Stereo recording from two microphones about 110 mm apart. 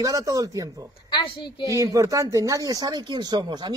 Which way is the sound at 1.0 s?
45° left (ahead or behind).